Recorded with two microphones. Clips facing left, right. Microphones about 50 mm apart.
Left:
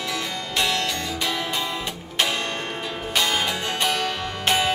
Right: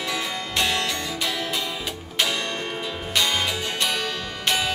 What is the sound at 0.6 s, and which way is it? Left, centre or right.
Music, right.